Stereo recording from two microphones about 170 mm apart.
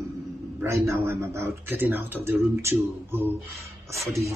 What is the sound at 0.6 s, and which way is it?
Speech, 15° right (ahead or behind).